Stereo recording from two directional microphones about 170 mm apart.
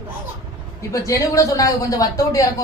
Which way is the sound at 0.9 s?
20° left (ahead or behind).